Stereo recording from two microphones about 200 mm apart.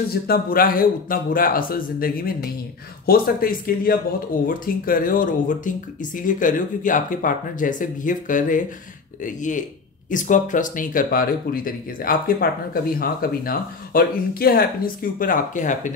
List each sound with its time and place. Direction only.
0.1 s speech: 50° left (ahead or behind)